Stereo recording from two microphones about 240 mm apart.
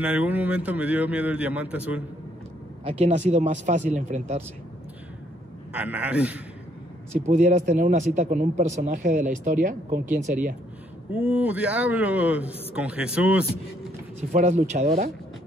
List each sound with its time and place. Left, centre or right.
0.0 s a man's voice: centre
2.8 s speech: right
5.7 s a man's voice: centre
7.2 s speech: right
11.1 s a man's voice: centre
14.3 s speech: right